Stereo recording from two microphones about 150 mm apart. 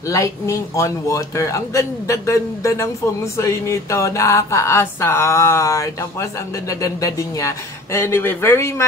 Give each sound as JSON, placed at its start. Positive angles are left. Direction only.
{"t": 0.1, "sound": "mantra", "side_deg": 20}
{"t": 6.7, "sound": "speech", "side_deg": 20}